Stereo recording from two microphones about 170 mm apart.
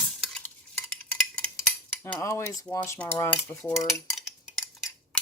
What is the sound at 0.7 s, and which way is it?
Cutlery, 10° left (ahead or behind).